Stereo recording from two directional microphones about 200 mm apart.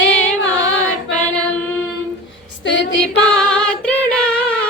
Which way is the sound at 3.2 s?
5° left (ahead or behind).